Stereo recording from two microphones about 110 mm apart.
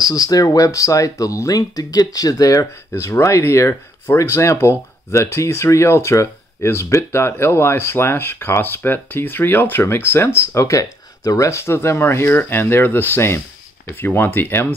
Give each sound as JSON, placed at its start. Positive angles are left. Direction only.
{"t": 0.0, "sound": "speech", "side_deg": 35}